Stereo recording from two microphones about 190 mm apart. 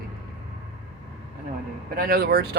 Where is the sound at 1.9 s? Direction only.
50° right (ahead or behind).